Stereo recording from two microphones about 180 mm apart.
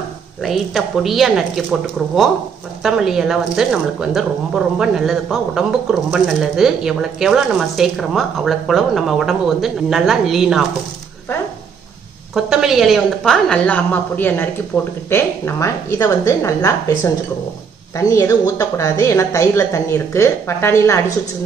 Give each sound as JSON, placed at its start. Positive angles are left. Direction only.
{"t": 0.4, "sound": "speech", "side_deg": 0}
{"t": 12.4, "sound": "speech", "side_deg": 0}